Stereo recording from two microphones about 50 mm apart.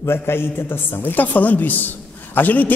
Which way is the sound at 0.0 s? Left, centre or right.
Left.